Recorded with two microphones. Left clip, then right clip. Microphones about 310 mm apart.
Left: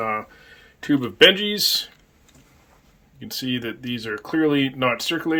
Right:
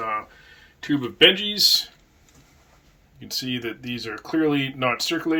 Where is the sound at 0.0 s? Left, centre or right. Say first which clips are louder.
Left 2 dB; centre.